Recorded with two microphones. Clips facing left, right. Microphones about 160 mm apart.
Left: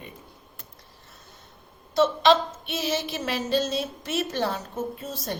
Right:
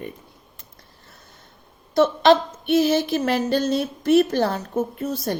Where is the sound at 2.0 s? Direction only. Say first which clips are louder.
Right 4 dB; 55° right (ahead or behind).